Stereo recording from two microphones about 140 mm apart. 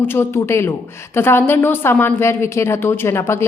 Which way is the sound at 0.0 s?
15° left (ahead or behind).